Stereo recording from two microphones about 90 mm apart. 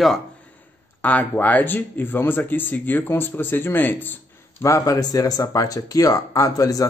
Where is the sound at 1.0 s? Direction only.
20° left (ahead or behind).